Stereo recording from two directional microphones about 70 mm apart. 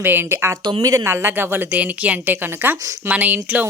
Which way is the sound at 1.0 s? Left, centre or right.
Right.